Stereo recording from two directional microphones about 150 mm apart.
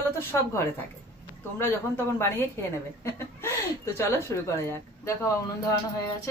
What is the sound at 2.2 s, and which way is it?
Speech, 15° left (ahead or behind).